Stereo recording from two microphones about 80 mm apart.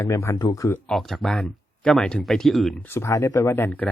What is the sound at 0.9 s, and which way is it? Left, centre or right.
Speech, centre.